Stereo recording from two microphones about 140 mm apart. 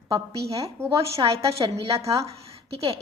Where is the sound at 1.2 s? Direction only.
35° right (ahead or behind).